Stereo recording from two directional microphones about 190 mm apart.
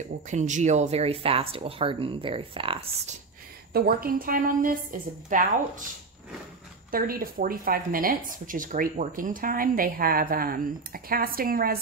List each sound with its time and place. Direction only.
0.3 s speech: 40° right (ahead or behind)
3.7 s speech: 50° right (ahead or behind)
6.9 s speech: 50° right (ahead or behind)